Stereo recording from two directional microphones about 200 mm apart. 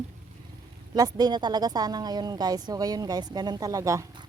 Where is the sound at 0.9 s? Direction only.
20° right (ahead or behind).